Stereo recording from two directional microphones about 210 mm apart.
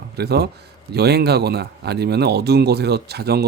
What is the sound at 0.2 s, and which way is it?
Speech, 50° right (ahead or behind).